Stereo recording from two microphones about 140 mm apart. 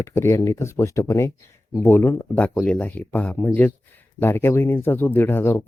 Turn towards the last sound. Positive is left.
turn(degrees=15)  # may be behind; listen again after turning